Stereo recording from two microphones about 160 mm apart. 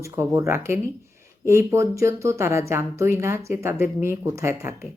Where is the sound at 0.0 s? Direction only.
20° right (ahead or behind).